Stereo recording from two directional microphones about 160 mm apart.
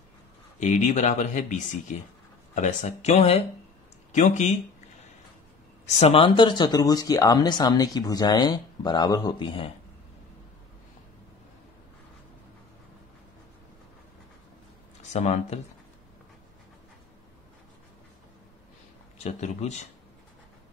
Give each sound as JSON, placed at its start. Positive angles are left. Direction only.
{"t": 0.6, "sound": "speech", "side_deg": 50}
{"t": 5.9, "sound": "speech", "side_deg": 40}
{"t": 15.0, "sound": "speech", "side_deg": 45}
{"t": 19.2, "sound": "speech", "side_deg": 45}